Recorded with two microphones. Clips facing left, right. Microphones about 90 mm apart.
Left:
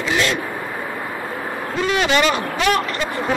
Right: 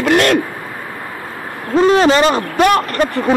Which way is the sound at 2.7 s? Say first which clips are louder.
Right 4 dB; 50° right (ahead or behind).